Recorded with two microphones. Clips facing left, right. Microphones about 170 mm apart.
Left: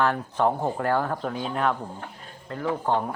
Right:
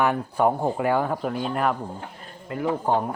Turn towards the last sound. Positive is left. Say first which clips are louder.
# right 2 dB
turn(degrees=-15)  # may be behind; listen again after turning